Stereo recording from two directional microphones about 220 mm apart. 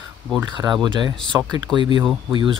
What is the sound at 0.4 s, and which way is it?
Speech, 15° right (ahead or behind).